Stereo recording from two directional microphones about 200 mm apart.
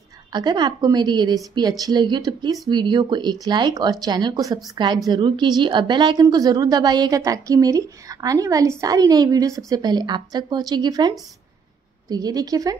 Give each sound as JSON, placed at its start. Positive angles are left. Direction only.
{"t": 0.3, "sound": "a woman's voice", "side_deg": -20}